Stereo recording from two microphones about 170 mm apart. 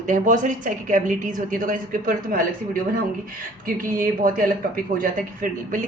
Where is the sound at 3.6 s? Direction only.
55° right (ahead or behind).